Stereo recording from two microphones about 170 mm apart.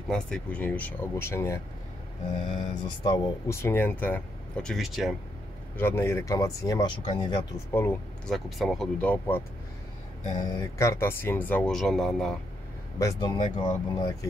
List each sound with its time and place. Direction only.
0.1 s speech: 5° left (ahead or behind)
2.4 s speech: 35° left (ahead or behind); by 5.1 s centre (ahead or behind)
5.8 s speech: 15° left (ahead or behind)
7.7 s speech: 10° left (ahead or behind)
8.5 s speech: centre (ahead or behind)
10.6 s speech: 15° left (ahead or behind)
13.0 s speech: 25° left (ahead or behind)